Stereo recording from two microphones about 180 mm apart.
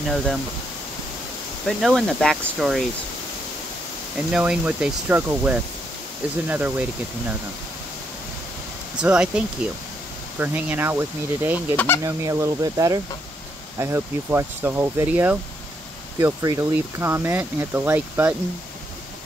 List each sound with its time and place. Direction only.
0.0 s speech: centre (ahead or behind)
1.7 s speech: centre (ahead or behind)
4.3 s speech: 5° right (ahead or behind)
9.0 s speech: 5° right (ahead or behind)
10.4 s speech: 10° right (ahead or behind)
11.7 s speech: 10° left (ahead or behind)
12.0 s speech: 20° right (ahead or behind)